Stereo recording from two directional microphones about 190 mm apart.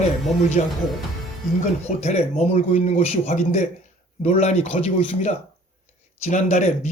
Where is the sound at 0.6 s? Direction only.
35° left (ahead or behind).